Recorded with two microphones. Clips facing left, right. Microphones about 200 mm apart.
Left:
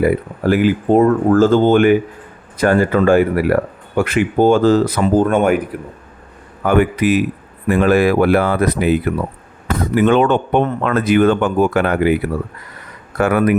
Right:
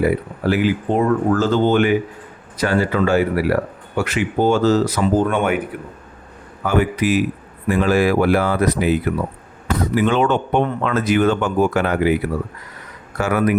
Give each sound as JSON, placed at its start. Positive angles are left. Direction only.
{"t": 0.0, "sound": "speech", "side_deg": 50}
{"t": 6.7, "sound": "speech", "side_deg": 60}
{"t": 13.1, "sound": "speech", "side_deg": 55}